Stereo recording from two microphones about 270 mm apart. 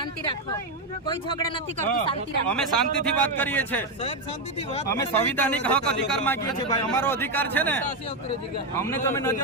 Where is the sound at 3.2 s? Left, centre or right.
Centre.